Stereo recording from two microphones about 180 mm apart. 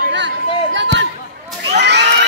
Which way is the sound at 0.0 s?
75° right (ahead or behind).